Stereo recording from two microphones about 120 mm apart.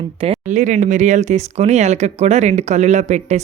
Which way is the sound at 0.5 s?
90° right.